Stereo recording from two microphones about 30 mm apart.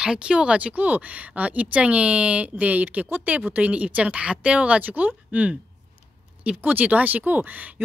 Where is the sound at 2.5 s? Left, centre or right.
Right.